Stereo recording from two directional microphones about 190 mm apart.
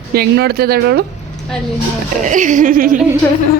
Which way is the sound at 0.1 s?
55° right (ahead or behind).